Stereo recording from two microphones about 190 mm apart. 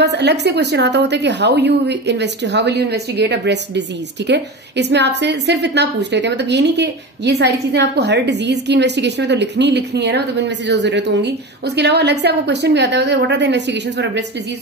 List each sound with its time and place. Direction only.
0.0 s a woman's voice: 60° right (ahead or behind)